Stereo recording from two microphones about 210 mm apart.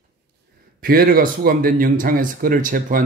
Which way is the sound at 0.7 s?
45° right (ahead or behind).